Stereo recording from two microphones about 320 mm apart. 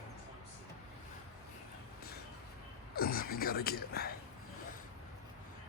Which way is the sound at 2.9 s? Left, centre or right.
Left.